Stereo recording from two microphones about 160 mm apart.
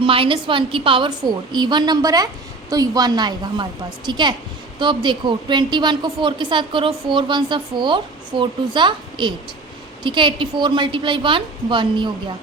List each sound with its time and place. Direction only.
0.0 s a woman's voice: 35° right (ahead or behind)